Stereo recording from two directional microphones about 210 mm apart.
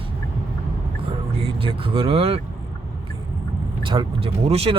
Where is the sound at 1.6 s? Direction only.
25° right (ahead or behind).